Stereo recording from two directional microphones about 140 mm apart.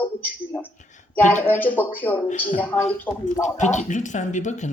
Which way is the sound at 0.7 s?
60° left (ahead or behind).